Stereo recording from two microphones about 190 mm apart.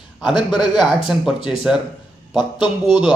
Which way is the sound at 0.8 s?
Centre (ahead or behind).